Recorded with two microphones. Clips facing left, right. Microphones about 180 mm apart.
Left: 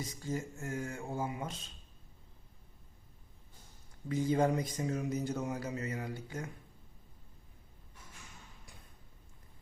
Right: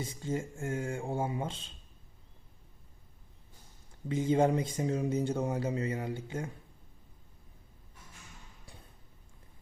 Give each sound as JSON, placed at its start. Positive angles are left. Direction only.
{"t": 0.0, "sound": "speech", "side_deg": -25}
{"t": 4.1, "sound": "speech", "side_deg": -25}